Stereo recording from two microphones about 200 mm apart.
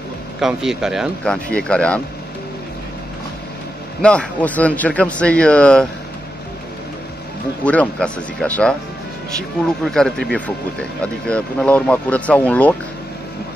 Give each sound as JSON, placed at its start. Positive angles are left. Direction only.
{"t": 0.4, "sound": "speech", "side_deg": 0}
{"t": 4.0, "sound": "a man's voice", "side_deg": 5}
{"t": 7.6, "sound": "a man's voice", "side_deg": 5}
{"t": 9.8, "sound": "speech", "side_deg": 0}